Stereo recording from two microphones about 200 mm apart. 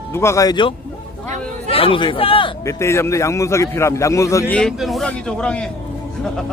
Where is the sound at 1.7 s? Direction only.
25° left (ahead or behind).